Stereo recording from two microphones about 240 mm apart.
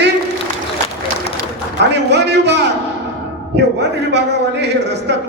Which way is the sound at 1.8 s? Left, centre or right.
Right.